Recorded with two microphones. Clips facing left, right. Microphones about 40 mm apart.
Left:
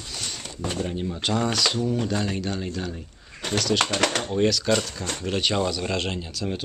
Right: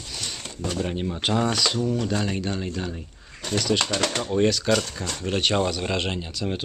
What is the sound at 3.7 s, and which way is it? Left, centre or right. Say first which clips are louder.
Speech: left 2 dB; left.